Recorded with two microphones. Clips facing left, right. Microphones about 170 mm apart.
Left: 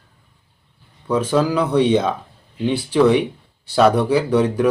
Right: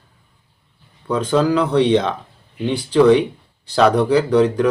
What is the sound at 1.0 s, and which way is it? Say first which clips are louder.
A man's voice: right 1 dB; 5° left (ahead or behind).